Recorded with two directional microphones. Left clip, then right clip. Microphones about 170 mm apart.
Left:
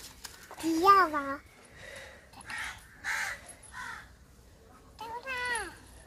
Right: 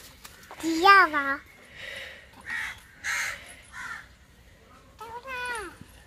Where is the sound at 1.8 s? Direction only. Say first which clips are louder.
Right 8 dB; 5° left (ahead or behind).